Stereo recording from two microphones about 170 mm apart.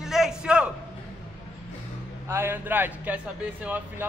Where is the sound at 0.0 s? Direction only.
5° right (ahead or behind).